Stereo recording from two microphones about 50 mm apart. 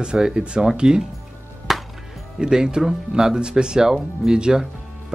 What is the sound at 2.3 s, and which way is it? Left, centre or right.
Speech, centre.